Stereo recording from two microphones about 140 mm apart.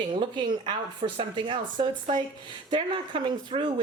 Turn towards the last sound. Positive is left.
turn(degrees=-35)  # may be behind; listen again after turning